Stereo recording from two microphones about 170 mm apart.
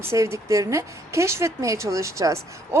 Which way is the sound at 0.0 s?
15° right (ahead or behind).